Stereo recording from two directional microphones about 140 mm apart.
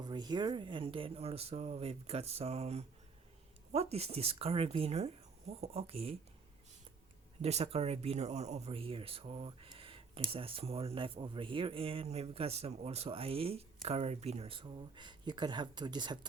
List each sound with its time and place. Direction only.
0.0 s speech: 30° right (ahead or behind)
7.4 s speech: 45° right (ahead or behind)